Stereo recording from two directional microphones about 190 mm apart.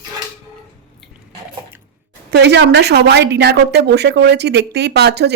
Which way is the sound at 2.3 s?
65° right (ahead or behind).